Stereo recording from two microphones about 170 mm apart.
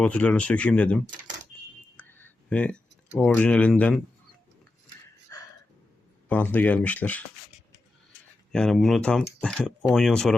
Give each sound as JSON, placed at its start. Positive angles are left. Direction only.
{"t": 0.0, "sound": "speech", "side_deg": 10}
{"t": 2.0, "sound": "a sound", "side_deg": 10}
{"t": 3.2, "sound": "speech", "side_deg": 5}
{"t": 5.3, "sound": "a sound", "side_deg": 20}
{"t": 6.2, "sound": "speech", "side_deg": 10}
{"t": 8.5, "sound": "speech", "side_deg": 0}